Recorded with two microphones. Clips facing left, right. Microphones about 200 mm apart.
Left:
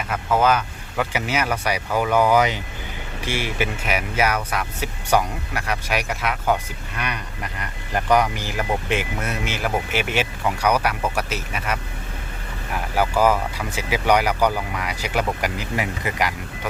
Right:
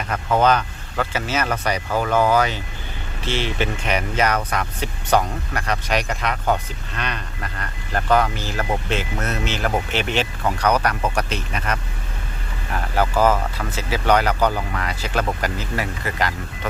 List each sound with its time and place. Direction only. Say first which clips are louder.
0.1 s speech: right 1 dB; 5° left (ahead or behind)